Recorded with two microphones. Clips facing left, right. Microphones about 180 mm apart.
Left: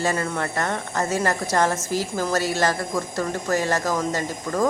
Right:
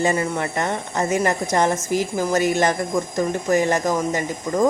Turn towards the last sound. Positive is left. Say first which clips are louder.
# right 3 dB
turn(degrees=-15)  # may be behind; listen again after turning